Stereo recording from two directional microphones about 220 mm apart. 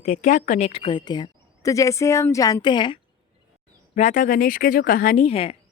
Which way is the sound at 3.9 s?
35° left (ahead or behind).